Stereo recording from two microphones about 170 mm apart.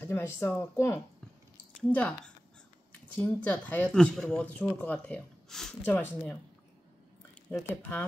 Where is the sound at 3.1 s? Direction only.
10° left (ahead or behind).